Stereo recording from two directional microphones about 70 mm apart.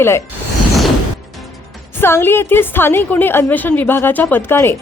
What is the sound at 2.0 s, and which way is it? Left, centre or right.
A woman's voice, left.